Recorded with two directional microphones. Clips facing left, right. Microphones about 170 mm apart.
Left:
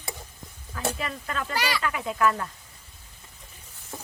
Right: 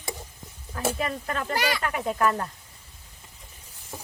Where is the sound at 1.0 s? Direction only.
40° right (ahead or behind).